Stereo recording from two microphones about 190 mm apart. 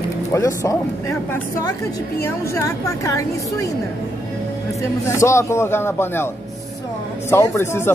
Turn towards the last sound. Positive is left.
turn(degrees=15)  # may be behind; listen again after turning